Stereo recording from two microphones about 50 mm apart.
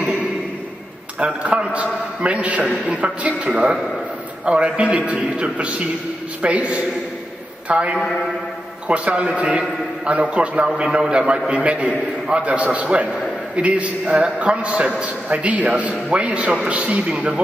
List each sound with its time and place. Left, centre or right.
1.2 s a man's voice: right
4.5 s a man's voice: right